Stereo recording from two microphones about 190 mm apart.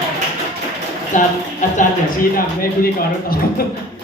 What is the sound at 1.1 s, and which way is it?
A man's voice, 40° left (ahead or behind).